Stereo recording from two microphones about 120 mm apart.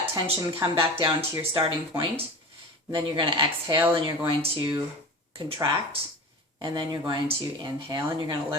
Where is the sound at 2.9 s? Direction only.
45° right (ahead or behind).